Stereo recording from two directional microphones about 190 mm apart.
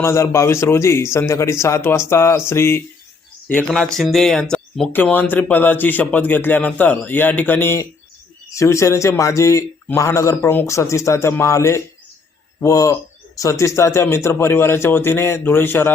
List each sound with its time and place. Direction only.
0.0 s speech: 15° left (ahead or behind)